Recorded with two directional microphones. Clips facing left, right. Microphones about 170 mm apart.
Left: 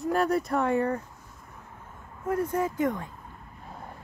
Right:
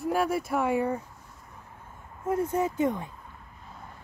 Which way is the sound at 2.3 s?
25° right (ahead or behind).